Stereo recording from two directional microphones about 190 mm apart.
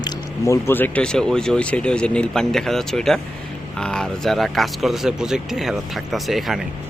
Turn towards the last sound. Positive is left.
turn(degrees=0)  # may be behind; listen again after turning